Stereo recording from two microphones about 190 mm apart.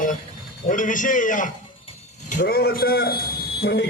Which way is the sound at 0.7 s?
45° left (ahead or behind).